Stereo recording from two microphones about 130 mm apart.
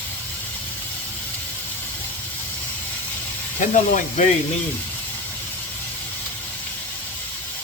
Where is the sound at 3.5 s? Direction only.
70° left (ahead or behind).